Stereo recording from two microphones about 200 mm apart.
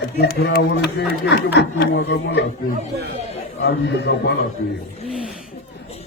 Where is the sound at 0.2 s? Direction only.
50° left (ahead or behind).